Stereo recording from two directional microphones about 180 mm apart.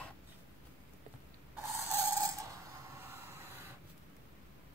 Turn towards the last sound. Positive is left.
turn(degrees=-15)  # may be behind; listen again after turning